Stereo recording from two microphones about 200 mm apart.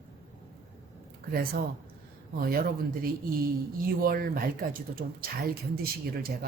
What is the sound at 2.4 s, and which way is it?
Speech, 50° right (ahead or behind).